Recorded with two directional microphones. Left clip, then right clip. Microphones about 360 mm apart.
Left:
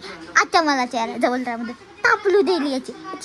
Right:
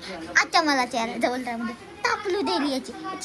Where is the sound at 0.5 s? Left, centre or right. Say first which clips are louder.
Left 3 dB; centre.